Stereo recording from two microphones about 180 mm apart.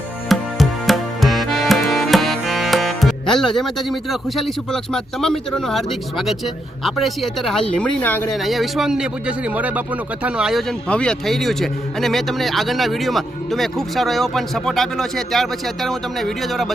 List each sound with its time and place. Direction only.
0.3 s music: centre (ahead or behind)
8.4 s speech: centre (ahead or behind)